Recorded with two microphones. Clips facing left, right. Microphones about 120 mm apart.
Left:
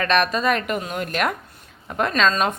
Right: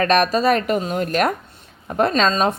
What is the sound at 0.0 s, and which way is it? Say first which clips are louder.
A woman's voice: right 4 dB; 35° right (ahead or behind).